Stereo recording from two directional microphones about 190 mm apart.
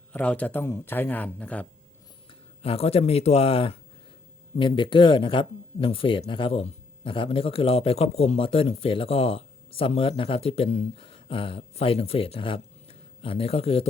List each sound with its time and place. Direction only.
0.1 s a man's voice: 5° left (ahead or behind)
2.6 s speech: 30° left (ahead or behind)